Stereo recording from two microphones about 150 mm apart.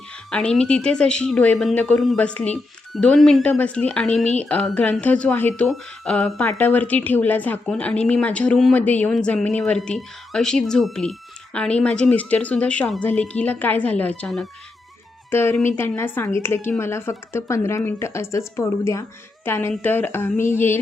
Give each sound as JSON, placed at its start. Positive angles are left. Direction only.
{"t": 0.3, "sound": "speech", "side_deg": 5}
{"t": 15.3, "sound": "speech", "side_deg": 15}